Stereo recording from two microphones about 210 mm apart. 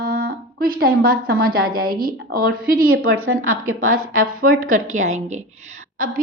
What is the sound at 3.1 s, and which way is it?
Speech, 90° right.